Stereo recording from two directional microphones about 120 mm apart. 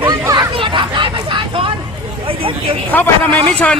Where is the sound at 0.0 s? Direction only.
35° right (ahead or behind).